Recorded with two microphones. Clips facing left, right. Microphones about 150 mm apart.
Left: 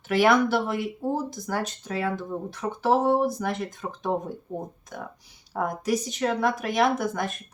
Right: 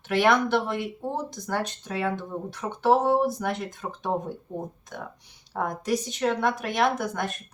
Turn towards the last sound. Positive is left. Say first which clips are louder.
# left 1 dB
turn(degrees=0)  # may be behind; listen again after turning